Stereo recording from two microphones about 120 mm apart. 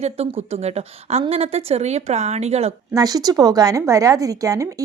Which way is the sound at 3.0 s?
30° right (ahead or behind).